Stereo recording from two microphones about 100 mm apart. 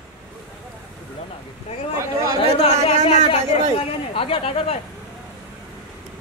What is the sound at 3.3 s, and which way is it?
A woman's voice, 60° left (ahead or behind).